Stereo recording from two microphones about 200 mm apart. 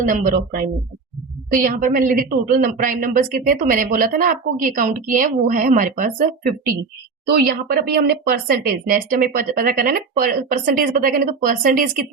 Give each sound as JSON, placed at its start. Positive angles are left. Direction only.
{"t": 0.0, "sound": "speech", "side_deg": -40}